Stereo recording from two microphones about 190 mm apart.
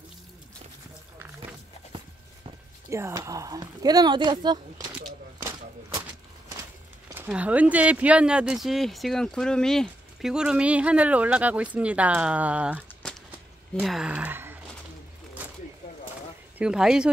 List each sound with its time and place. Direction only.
2.9 s speech: 15° right (ahead or behind)
7.2 s speech: 5° right (ahead or behind)
15.4 s a sound: 10° right (ahead or behind)
16.5 s speech: 5° right (ahead or behind)